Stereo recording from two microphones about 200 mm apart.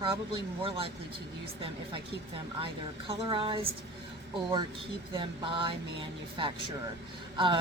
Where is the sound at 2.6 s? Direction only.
25° right (ahead or behind).